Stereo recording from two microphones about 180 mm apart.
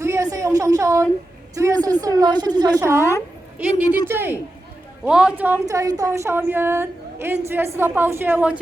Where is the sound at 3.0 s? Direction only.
15° left (ahead or behind).